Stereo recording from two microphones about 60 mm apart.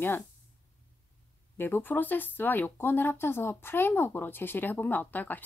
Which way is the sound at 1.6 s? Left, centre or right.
Left.